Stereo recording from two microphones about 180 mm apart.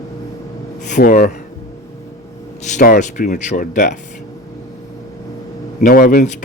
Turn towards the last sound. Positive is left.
turn(degrees=55)  # may be behind; listen again after turning